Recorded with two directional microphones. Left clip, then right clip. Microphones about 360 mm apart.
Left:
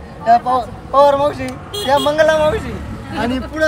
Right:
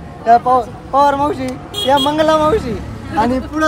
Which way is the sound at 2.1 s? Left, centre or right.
Centre.